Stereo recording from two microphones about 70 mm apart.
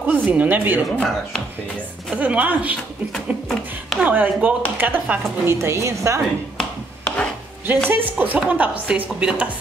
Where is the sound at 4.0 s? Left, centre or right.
Right.